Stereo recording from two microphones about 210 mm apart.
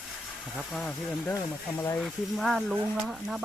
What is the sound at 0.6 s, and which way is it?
Speech, centre (ahead or behind).